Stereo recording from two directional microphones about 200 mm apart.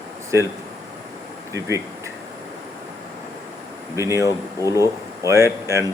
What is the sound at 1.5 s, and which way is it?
Speech, 15° right (ahead or behind).